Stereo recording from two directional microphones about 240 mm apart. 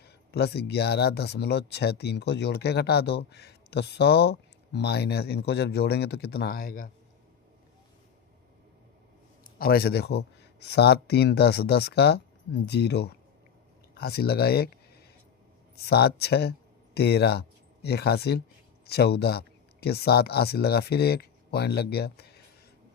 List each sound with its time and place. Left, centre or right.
0.0 s speech: left
9.4 s speech: left